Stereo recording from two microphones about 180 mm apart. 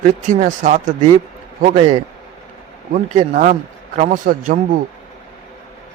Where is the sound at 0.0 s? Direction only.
45° right (ahead or behind).